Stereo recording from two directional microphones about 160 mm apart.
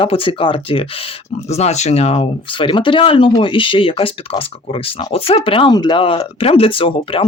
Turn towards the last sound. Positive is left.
turn(degrees=35)  # may be behind; listen again after turning